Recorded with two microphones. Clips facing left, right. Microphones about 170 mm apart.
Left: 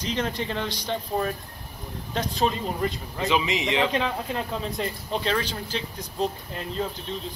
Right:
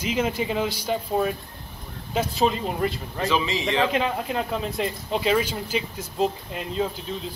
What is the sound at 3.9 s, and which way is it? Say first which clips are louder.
Speech: right 2 dB; 5° right (ahead or behind).